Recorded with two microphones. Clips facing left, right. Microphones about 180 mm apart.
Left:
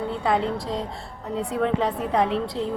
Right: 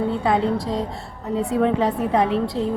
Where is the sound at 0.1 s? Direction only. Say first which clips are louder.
Right 3 dB; centre (ahead or behind).